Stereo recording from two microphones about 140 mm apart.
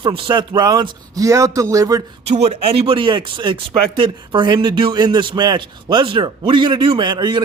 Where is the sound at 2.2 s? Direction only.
50° right (ahead or behind).